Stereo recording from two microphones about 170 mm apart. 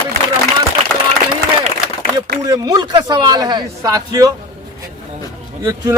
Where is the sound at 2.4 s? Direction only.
20° right (ahead or behind).